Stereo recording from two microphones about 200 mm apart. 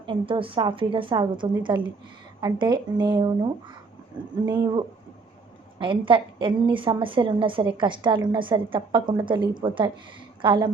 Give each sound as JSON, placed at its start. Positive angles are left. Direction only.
{"t": 0.0, "sound": "a woman's voice", "side_deg": -25}
{"t": 5.8, "sound": "a woman's voice", "side_deg": -25}